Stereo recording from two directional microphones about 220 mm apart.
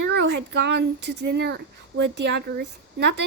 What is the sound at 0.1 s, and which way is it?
A child's voice, 50° right (ahead or behind).